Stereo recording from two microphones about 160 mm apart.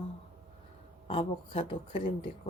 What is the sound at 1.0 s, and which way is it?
Speech, 35° left (ahead or behind).